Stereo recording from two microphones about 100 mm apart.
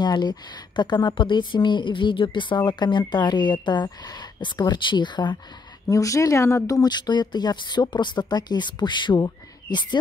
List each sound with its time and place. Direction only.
0.0 s a woman's voice: 45° left (ahead or behind)
5.9 s speech: 35° left (ahead or behind)
6.8 s a woman's voice: 45° left (ahead or behind)